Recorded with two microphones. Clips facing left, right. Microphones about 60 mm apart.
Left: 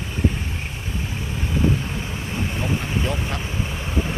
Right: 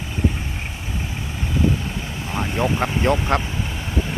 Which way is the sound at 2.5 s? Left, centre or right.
Right.